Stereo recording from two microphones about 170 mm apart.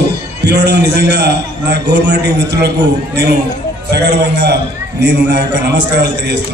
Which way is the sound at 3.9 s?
80° right.